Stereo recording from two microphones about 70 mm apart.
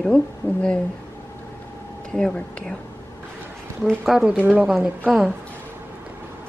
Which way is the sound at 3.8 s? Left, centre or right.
Centre.